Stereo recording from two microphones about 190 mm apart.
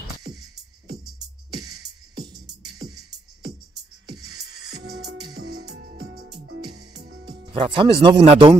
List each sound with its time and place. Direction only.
1.7 s music: 60° right (ahead or behind)
4.1 s music: 60° right (ahead or behind)
7.5 s speech: 25° right (ahead or behind)